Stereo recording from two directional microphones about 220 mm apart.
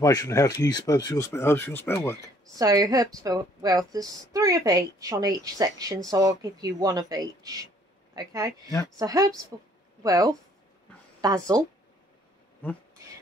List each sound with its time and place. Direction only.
0.0 s speech: 15° left (ahead or behind)
2.6 s a woman's voice: 15° right (ahead or behind)